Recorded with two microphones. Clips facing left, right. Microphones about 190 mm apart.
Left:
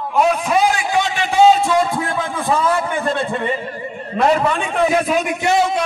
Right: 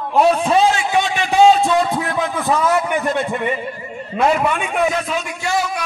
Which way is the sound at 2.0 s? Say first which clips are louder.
Right 1 dB; 25° left (ahead or behind).